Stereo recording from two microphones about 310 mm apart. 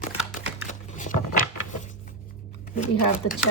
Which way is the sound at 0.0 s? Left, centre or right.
Left.